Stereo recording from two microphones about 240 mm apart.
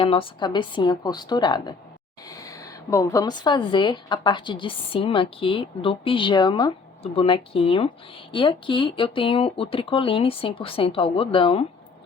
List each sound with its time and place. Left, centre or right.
0.0 s a woman's voice: left